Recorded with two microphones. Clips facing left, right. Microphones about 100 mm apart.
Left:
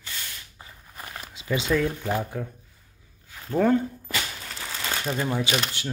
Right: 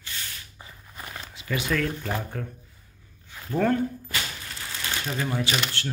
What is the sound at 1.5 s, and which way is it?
Speech, 20° left (ahead or behind).